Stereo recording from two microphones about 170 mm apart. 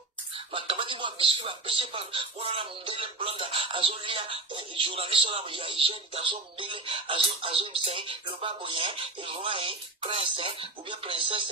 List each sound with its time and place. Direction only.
0.5 s speech: 30° right (ahead or behind)